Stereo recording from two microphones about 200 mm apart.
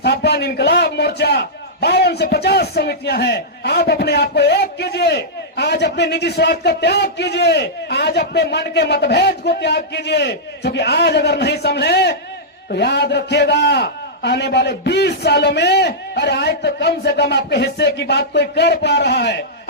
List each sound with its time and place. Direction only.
0.0 s a man's voice: 55° left (ahead or behind)